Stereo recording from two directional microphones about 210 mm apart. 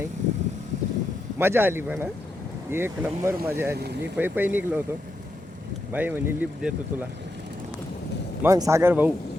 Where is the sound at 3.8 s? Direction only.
50° right (ahead or behind).